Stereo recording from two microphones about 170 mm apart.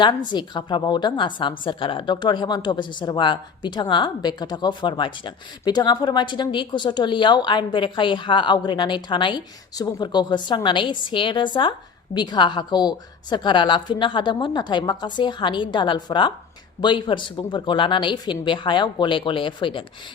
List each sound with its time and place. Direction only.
0.3 s a woman's voice: 25° left (ahead or behind)